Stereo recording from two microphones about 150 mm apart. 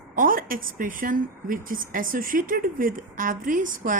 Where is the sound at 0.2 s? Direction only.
70° right (ahead or behind).